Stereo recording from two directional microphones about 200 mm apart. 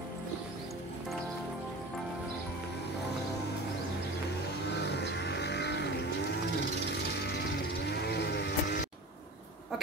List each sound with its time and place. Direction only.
4.8 s music: 55° left (ahead or behind)
7.2 s vehicle: 55° left (ahead or behind)